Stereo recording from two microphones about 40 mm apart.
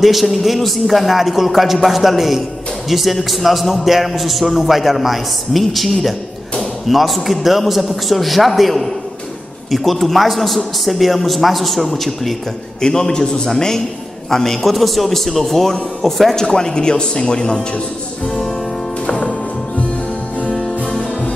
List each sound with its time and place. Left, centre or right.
0.0 s a man's voice: centre
12.8 s a man's voice: centre
16.4 s speech: centre
19.0 s music: left